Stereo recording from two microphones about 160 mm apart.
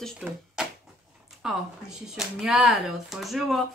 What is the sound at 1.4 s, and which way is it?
Speech, 5° right (ahead or behind).